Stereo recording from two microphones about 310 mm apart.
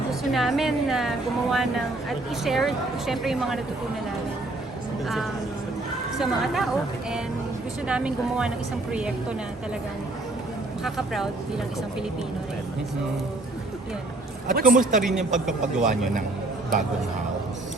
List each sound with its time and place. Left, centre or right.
0.1 s a woman's voice: centre
5.0 s a woman's voice: centre
10.8 s a woman's voice: centre
14.5 s a man's voice: right
15.0 s a woman's voice: centre
15.8 s a man's voice: right